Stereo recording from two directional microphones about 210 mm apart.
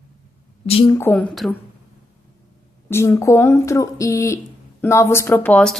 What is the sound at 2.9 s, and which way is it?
A woman's voice, 15° left (ahead or behind).